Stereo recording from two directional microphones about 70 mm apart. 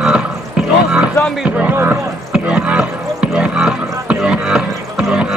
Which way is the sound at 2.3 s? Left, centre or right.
Centre.